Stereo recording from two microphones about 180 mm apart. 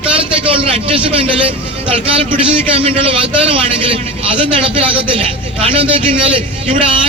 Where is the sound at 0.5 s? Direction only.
30° right (ahead or behind).